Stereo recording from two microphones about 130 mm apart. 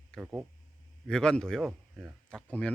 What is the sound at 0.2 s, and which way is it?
Speech, 10° right (ahead or behind).